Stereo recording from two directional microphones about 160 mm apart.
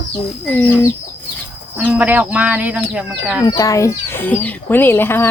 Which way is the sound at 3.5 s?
20° left (ahead or behind).